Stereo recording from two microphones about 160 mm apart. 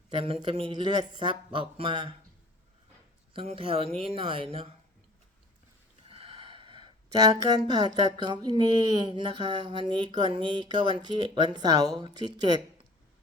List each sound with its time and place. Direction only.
0.1 s a man's voice: 35° right (ahead or behind)
3.3 s speech: 35° right (ahead or behind)
6.1 s a sound: 35° right (ahead or behind)
9.0 s speech: 30° right (ahead or behind)